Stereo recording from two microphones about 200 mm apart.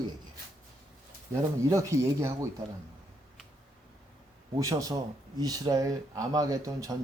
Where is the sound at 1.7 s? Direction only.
15° right (ahead or behind).